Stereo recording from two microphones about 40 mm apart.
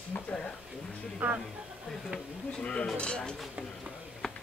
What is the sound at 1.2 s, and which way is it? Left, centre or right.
Speech, right.